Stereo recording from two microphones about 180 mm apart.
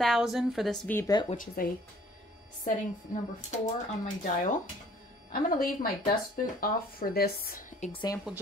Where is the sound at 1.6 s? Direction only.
50° left (ahead or behind).